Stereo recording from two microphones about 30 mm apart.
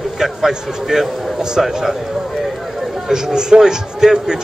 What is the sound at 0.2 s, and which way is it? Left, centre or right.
A man's voice, centre.